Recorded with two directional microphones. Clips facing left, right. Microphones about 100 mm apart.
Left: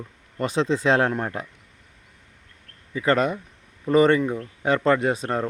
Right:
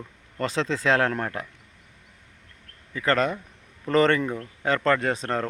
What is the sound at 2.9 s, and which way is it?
Speech, 15° left (ahead or behind).